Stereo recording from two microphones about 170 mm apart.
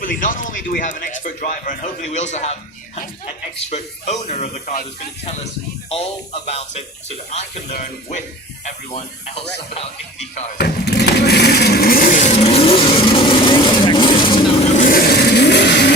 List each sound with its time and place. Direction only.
0.0 s speech: 50° left (ahead or behind)
5.9 s speech: 40° left (ahead or behind)
10.6 s vehicle: 75° left (ahead or behind)